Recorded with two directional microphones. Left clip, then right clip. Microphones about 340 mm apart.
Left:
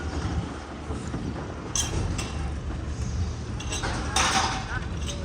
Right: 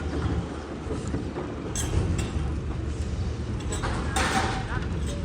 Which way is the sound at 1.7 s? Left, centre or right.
Centre.